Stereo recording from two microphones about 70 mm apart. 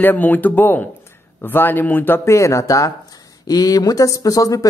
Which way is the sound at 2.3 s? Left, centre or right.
Left.